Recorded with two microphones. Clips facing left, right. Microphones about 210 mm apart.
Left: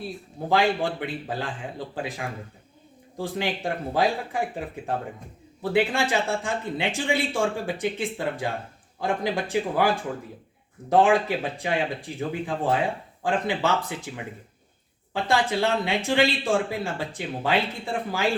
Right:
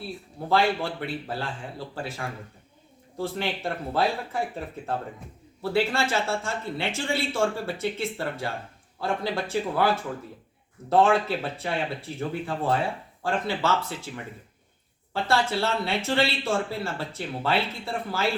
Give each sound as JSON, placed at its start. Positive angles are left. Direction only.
{"t": 0.5, "sound": "speech", "side_deg": 15}
{"t": 15.1, "sound": "speech", "side_deg": 15}